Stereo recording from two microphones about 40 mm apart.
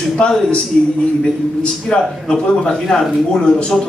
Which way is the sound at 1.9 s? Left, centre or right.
Centre.